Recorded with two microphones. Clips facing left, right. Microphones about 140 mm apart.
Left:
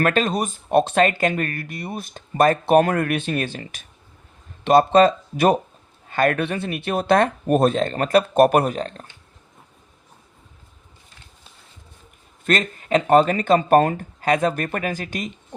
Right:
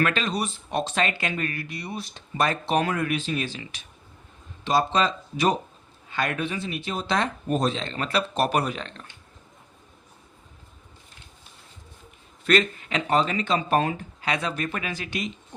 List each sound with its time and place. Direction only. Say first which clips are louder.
0.0 s speech: left 5 dB; 50° left (ahead or behind)
12.5 s speech: left 2 dB; 45° left (ahead or behind)